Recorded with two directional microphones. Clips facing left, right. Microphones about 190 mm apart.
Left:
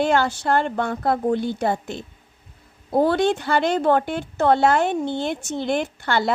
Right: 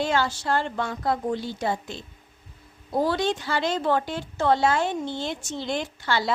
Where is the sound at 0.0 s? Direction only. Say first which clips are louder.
Left 5 dB; 55° left (ahead or behind).